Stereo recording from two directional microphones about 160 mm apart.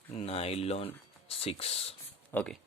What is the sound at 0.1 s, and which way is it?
Speech, 40° left (ahead or behind).